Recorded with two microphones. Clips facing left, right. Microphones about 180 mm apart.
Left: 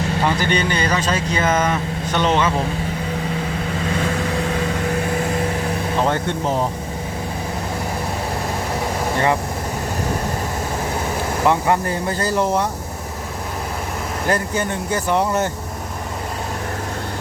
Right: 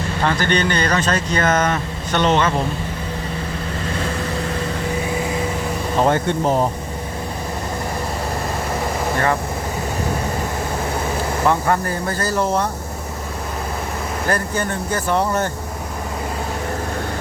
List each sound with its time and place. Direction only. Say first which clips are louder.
0.3 s speech: right 3 dB; 10° left (ahead or behind)
9.1 s speech: left 1 dB; 15° left (ahead or behind)
11.4 s speech: left 1 dB; 15° left (ahead or behind)
14.3 s speech: left 1 dB; 15° left (ahead or behind)